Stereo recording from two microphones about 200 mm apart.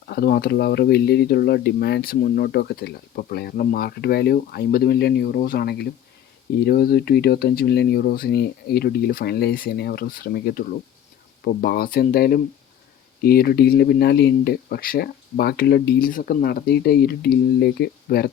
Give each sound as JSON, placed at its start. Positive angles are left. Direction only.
{"t": 0.1, "sound": "speech", "side_deg": 50}